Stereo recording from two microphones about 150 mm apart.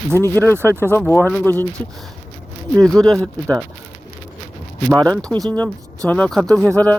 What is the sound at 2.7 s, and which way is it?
Speech, 5° left (ahead or behind).